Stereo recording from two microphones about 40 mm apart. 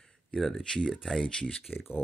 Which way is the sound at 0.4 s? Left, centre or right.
Centre.